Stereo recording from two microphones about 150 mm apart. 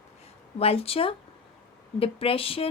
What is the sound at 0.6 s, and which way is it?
A woman's voice, 40° left (ahead or behind).